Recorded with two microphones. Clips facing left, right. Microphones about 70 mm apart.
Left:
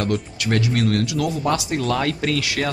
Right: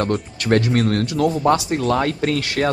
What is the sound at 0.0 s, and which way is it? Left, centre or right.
Speech, right.